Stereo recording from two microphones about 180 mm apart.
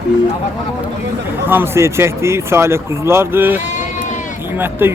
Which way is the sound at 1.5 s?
15° right (ahead or behind).